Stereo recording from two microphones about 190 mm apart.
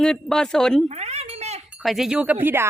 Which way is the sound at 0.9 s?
35° right (ahead or behind).